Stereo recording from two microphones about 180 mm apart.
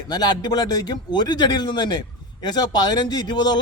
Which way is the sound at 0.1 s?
20° left (ahead or behind).